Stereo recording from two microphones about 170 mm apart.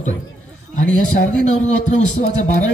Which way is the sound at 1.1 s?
45° left (ahead or behind).